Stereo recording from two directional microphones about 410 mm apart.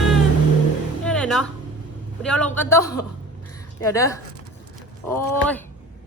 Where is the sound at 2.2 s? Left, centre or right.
Centre.